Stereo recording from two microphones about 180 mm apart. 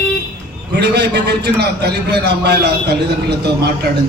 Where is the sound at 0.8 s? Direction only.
70° right (ahead or behind).